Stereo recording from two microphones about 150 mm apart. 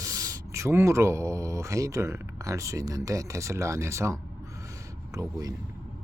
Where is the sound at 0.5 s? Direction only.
20° right (ahead or behind).